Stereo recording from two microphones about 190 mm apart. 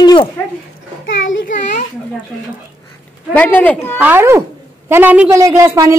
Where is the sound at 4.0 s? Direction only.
10° right (ahead or behind).